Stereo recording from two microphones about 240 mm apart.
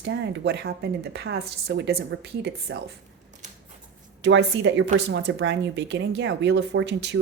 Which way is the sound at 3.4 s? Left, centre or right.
Right.